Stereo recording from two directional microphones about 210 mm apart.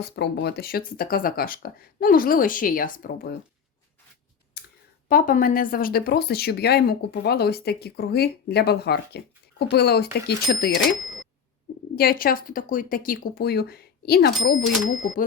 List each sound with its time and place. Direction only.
0.0 s speech: 50° left (ahead or behind)
4.6 s clicking: 50° left (ahead or behind)
5.0 s speech: 40° left (ahead or behind)
10.8 s speech: centre (ahead or behind)
11.9 s speech: 45° left (ahead or behind)